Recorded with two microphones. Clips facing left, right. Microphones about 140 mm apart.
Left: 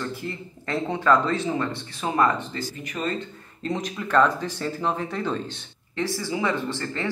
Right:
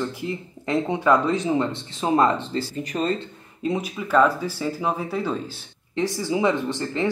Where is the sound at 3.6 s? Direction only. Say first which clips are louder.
Right 3 dB; 10° right (ahead or behind).